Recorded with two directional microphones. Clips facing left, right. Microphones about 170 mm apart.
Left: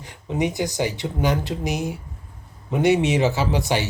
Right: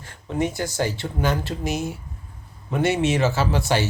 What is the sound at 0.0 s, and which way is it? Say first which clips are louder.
Speech: left 1 dB; 15° left (ahead or behind).